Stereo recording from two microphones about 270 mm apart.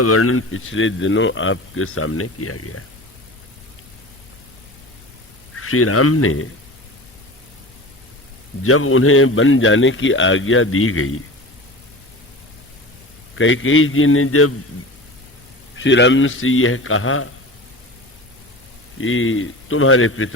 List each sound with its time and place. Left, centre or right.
0.0 s a man's voice: left
5.5 s a man's voice: left
8.6 s a man's voice: left
13.3 s a man's voice: left
15.8 s a man's voice: left
18.9 s a man's voice: left